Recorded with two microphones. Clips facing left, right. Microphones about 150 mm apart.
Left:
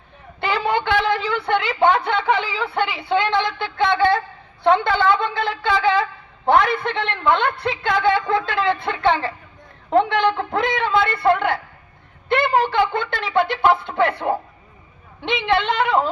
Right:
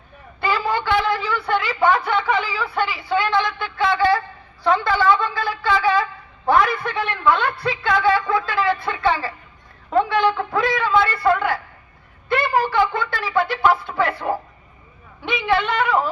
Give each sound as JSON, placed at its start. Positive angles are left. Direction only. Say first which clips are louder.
{"t": 0.3, "sound": "a sound", "louder": "left 1 dB", "side_deg": 20}
{"t": 1.5, "sound": "a woman's voice", "louder": "left 1 dB", "side_deg": 20}
{"t": 10.7, "sound": "a woman's voice", "louder": "right 1 dB", "side_deg": 20}